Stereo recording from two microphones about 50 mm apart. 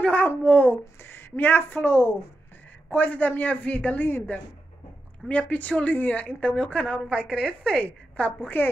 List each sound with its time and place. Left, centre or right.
0.0 s a sound: left
0.3 s a man's voice: left
1.0 s a sound: left
1.8 s speech: left
2.9 s a man's voice: left
5.3 s a woman's voice: left